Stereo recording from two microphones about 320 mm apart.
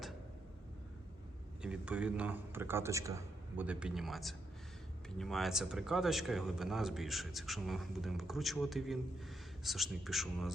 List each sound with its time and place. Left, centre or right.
1.6 s speech: centre